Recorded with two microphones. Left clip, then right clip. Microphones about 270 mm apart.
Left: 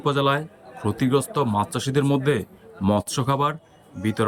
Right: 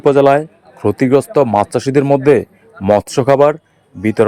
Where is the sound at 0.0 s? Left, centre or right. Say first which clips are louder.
Right 12 dB; centre.